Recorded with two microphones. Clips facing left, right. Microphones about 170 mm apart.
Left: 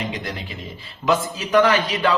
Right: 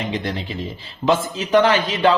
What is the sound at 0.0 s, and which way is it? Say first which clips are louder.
A man's voice: right 4 dB; 30° right (ahead or behind).